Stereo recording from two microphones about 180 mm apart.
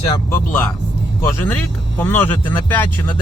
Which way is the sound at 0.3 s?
15° left (ahead or behind).